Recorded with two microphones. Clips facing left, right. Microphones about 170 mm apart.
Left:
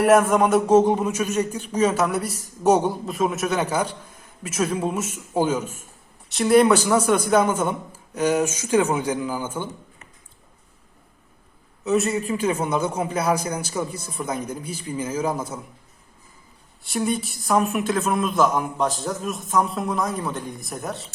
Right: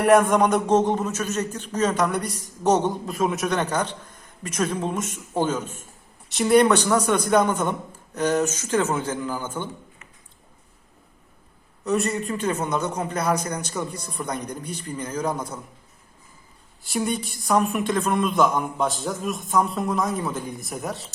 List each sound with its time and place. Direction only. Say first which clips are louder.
0.0 s a man's voice: left 1 dB; centre (ahead or behind)
11.9 s speech: left 2 dB; centre (ahead or behind)
16.8 s speech: left 1 dB; centre (ahead or behind)